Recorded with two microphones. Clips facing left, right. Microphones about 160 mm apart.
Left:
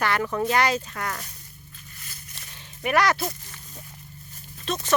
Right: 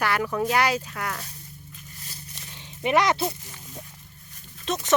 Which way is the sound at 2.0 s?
35° right (ahead or behind).